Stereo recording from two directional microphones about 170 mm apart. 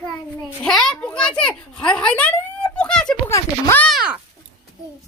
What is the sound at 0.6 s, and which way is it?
A child's voice, 5° left (ahead or behind).